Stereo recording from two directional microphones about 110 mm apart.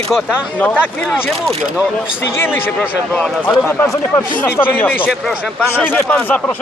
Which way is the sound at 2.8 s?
10° left (ahead or behind).